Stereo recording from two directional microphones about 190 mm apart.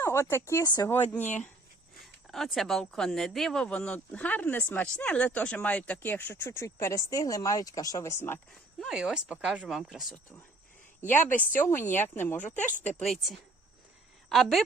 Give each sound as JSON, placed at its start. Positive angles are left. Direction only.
{"t": 0.0, "sound": "speech", "side_deg": 15}
{"t": 1.2, "sound": "speech", "side_deg": 40}
{"t": 2.2, "sound": "speech", "side_deg": 0}
{"t": 8.8, "sound": "speech", "side_deg": -5}
{"t": 11.5, "sound": "speech", "side_deg": 10}
{"t": 12.5, "sound": "speech", "side_deg": 40}
{"t": 12.8, "sound": "a woman's voice", "side_deg": 5}